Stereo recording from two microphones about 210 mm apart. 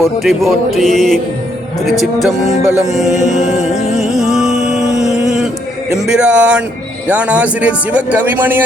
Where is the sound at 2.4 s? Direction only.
35° left (ahead or behind).